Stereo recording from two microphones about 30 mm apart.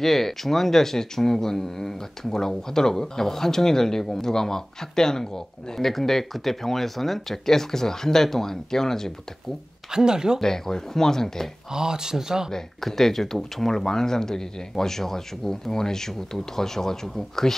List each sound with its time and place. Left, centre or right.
0.0 s speech: centre
5.9 s speech: centre
9.8 s speech: right
10.4 s speech: centre
11.7 s speech: right
12.4 s speech: centre